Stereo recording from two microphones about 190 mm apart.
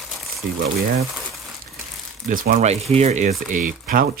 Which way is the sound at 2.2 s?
50° right (ahead or behind).